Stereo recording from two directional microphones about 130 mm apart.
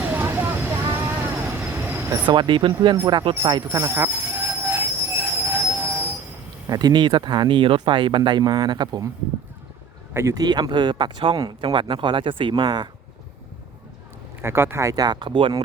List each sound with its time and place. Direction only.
0.0 s vehicle: 15° right (ahead or behind)
2.2 s speech: 35° right (ahead or behind)
3.7 s train: 20° right (ahead or behind)
6.7 s speech: 30° right (ahead or behind)
10.2 s speech: 25° right (ahead or behind)
14.4 s speech: 20° right (ahead or behind); by 15.6 s 40° right (ahead or behind)